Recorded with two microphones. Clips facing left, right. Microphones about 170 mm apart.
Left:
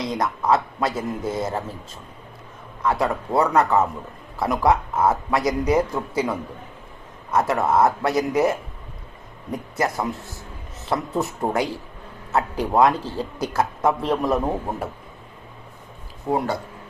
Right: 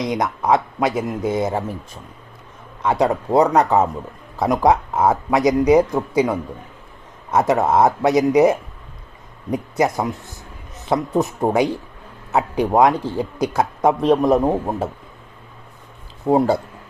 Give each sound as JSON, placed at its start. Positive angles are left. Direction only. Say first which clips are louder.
{"t": 0.1, "sound": "a man's voice", "louder": "right 2 dB", "side_deg": -15}
{"t": 2.8, "sound": "speech", "louder": "right 4 dB", "side_deg": -20}
{"t": 9.7, "sound": "a man's voice", "louder": "right 4 dB", "side_deg": -20}